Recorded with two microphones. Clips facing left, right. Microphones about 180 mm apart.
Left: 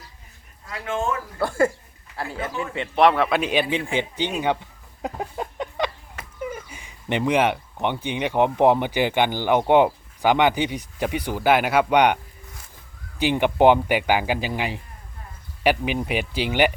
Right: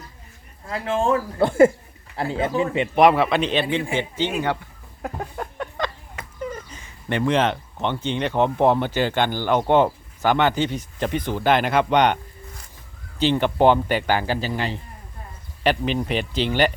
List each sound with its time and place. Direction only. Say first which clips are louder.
0.7 s speech: right 5 dB; 35° right (ahead or behind)
1.4 s speech: right 6 dB; 20° right (ahead or behind)
3.2 s speech: right 1 dB; 5° left (ahead or behind)
5.0 s a sound: left 1 dB; 15° left (ahead or behind)
6.4 s speech: even; 10° left (ahead or behind)